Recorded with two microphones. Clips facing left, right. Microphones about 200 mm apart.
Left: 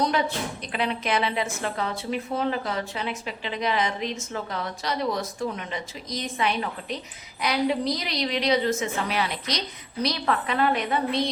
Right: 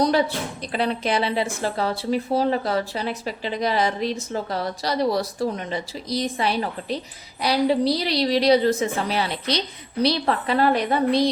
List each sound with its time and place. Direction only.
0.0 s a woman's voice: 35° right (ahead or behind)